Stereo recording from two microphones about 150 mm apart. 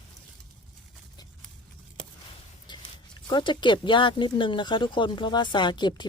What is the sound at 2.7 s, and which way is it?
Speech, 30° left (ahead or behind).